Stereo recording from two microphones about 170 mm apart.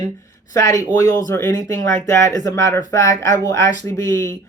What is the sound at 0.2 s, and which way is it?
A woman's voice, 20° left (ahead or behind).